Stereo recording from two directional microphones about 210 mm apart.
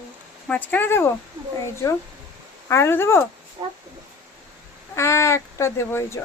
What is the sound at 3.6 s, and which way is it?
Speech, 20° right (ahead or behind).